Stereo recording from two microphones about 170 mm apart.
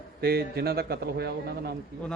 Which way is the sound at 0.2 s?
65° right (ahead or behind).